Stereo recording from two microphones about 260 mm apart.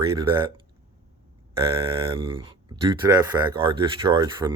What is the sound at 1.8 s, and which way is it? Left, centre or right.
A man's voice, centre.